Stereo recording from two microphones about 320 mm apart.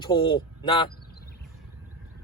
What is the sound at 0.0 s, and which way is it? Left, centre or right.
Speech, centre.